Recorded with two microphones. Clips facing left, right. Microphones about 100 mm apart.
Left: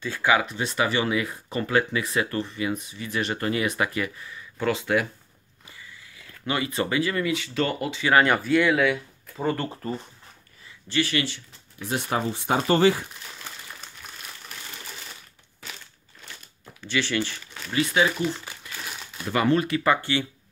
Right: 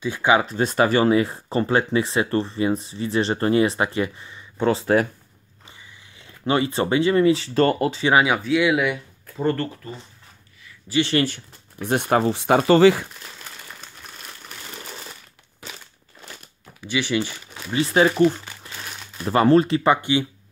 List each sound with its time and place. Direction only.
0.0 s speech: 20° right (ahead or behind)
0.5 s speech: 40° right (ahead or behind)
5.7 s speech: 25° right (ahead or behind); by 8.0 s 40° right (ahead or behind)
8.1 s speech: 10° right (ahead or behind)
9.2 s a sound: 5° left (ahead or behind)
9.8 s speech: 40° left (ahead or behind)
11.1 s speech: 50° right (ahead or behind); by 13.0 s 90° right
16.8 s speech: 15° right (ahead or behind)
17.7 s speech: 35° right (ahead or behind)
18.6 s crumpling: 35° right (ahead or behind)
19.2 s speech: 35° right (ahead or behind); by 20.2 s 15° right (ahead or behind)